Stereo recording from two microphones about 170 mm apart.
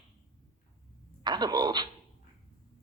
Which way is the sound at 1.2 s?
25° right (ahead or behind).